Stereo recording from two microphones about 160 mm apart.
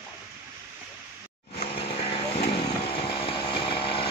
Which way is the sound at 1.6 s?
35° left (ahead or behind).